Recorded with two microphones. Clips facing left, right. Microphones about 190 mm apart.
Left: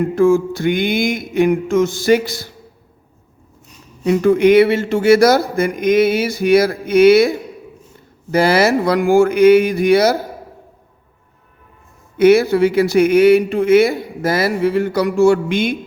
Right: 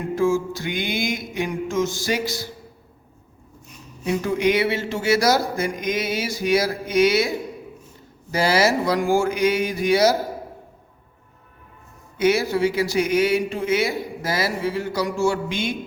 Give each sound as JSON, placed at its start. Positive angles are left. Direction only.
{"t": 0.2, "sound": "speech", "side_deg": 60}
{"t": 4.0, "sound": "speech", "side_deg": 60}
{"t": 8.3, "sound": "speech", "side_deg": 60}
{"t": 12.1, "sound": "speech", "side_deg": 55}